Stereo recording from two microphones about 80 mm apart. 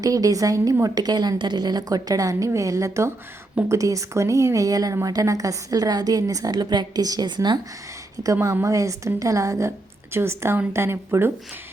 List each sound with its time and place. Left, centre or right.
0.0 s a woman's voice: right
8.1 s a woman's voice: right